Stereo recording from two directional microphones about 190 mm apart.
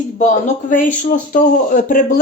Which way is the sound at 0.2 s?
40° left (ahead or behind).